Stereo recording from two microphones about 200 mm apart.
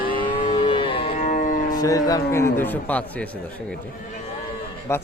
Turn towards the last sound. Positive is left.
turn(degrees=15)  # may be behind; listen again after turning